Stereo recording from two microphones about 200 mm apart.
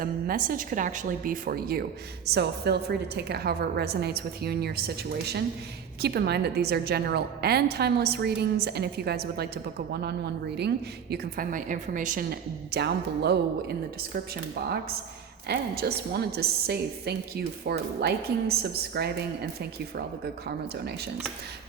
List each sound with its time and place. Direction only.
0.0 s a woman's voice: 45° right (ahead or behind)
15.4 s a woman's voice: 50° right (ahead or behind)
20.7 s a woman's voice: 55° right (ahead or behind)